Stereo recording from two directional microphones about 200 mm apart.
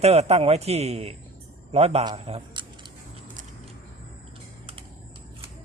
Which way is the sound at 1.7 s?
30° right (ahead or behind).